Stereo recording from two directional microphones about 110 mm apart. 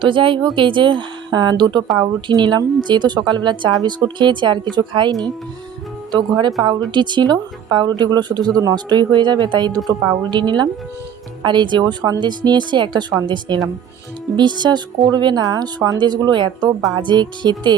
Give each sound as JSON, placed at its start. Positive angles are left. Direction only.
{"t": 0.0, "sound": "a woman's voice", "side_deg": -50}